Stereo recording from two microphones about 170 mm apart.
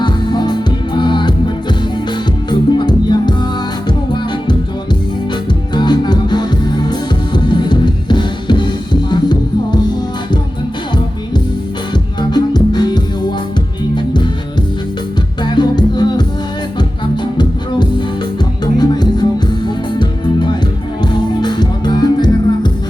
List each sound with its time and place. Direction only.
0.0 s music: 25° left (ahead or behind)
2.5 s music: 25° left (ahead or behind)
5.7 s music: 25° left (ahead or behind)
12.3 s music: 25° left (ahead or behind)
15.4 s music: 25° left (ahead or behind)
17.3 s music: 25° left (ahead or behind)